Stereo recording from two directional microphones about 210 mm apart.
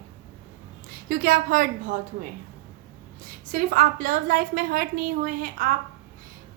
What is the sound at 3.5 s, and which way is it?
A woman's voice, 40° right (ahead or behind).